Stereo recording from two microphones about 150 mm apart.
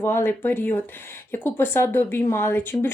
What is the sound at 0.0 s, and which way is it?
Speech, 15° left (ahead or behind).